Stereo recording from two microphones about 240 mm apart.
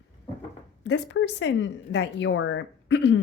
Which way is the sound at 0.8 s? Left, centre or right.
Left.